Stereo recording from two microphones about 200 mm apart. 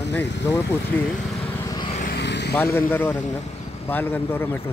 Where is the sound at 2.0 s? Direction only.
55° left (ahead or behind).